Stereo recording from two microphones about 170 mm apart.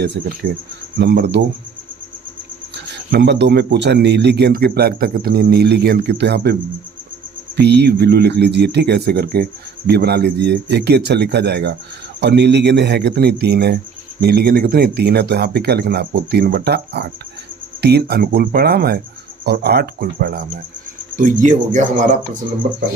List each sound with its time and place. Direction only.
0.4 s speech: 50° right (ahead or behind)
0.9 s speech: 90° right
2.7 s speech: 90° right; by 22.2 s 50° right (ahead or behind)